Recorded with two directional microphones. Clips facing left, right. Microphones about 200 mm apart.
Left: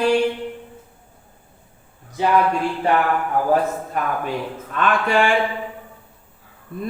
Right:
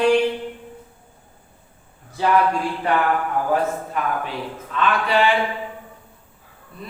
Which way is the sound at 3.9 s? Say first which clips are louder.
Left 3 dB; 45° left (ahead or behind).